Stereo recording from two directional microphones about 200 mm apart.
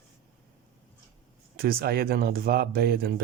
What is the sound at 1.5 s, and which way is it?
Speech, 50° right (ahead or behind).